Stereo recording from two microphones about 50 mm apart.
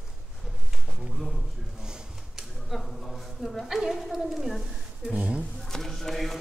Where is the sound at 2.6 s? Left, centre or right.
Centre.